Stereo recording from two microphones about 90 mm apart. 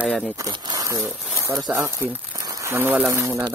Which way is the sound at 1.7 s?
25° right (ahead or behind).